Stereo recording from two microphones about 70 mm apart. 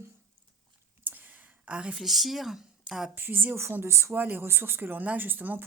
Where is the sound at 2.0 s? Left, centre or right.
Centre.